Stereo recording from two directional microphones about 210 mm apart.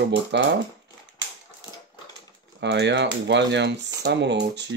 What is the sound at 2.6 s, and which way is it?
Speech, 55° right (ahead or behind).